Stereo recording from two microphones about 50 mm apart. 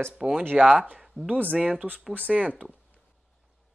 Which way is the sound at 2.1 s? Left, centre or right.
Right.